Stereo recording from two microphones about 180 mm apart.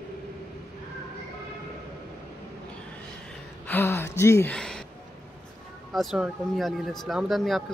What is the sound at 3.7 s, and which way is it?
Gasp, 10° left (ahead or behind).